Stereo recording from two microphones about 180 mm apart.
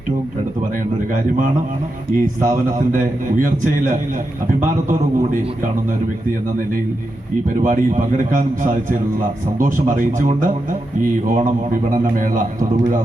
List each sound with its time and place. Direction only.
2.1 s a man's voice: 50° right (ahead or behind)
7.6 s a man's voice: 45° right (ahead or behind)